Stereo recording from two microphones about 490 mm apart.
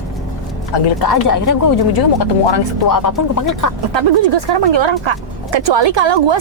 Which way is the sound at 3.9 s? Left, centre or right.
Right.